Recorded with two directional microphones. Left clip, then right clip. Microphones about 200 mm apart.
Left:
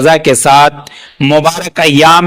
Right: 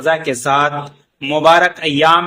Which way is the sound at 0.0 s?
45° left (ahead or behind).